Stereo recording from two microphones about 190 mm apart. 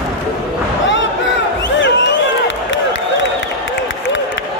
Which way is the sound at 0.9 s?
75° left (ahead or behind).